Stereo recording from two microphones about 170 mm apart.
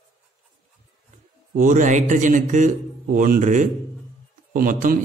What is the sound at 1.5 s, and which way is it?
A man's voice, 50° right (ahead or behind).